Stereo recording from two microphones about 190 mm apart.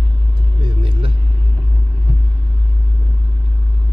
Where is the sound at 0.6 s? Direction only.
30° right (ahead or behind).